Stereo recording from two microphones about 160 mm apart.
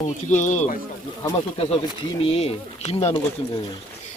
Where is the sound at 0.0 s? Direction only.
50° left (ahead or behind).